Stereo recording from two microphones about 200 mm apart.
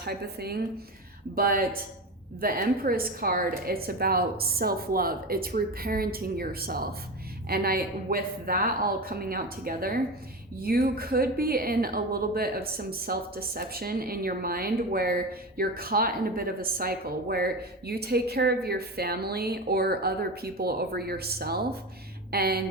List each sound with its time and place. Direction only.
0.0 s a woman's voice: 50° right (ahead or behind)